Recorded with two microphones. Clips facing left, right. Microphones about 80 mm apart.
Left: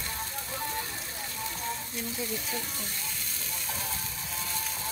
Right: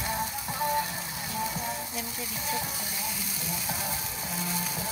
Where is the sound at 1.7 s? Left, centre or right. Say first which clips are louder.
Right 1 dB; centre.